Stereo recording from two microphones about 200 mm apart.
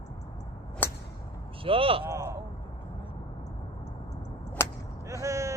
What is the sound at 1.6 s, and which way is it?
Speech, 25° right (ahead or behind).